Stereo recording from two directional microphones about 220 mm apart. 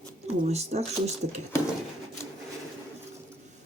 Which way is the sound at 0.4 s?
30° right (ahead or behind).